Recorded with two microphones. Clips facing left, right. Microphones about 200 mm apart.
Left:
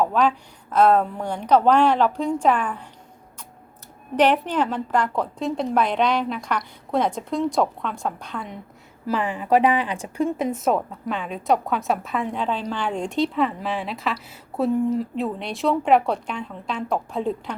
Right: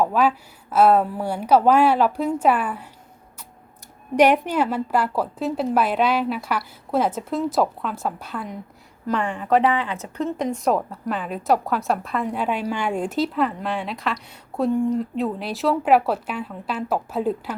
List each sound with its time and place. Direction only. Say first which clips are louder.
0.0 s a woman's voice: right 1 dB; 5° right (ahead or behind)
4.1 s speech: right 2 dB; 10° right (ahead or behind)